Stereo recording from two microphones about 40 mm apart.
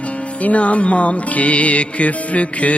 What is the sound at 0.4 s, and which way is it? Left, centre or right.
Music, left.